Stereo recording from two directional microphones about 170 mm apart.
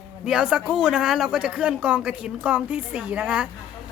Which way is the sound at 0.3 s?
5° right (ahead or behind).